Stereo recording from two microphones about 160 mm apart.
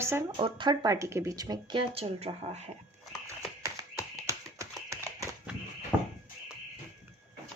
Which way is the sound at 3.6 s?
20° right (ahead or behind).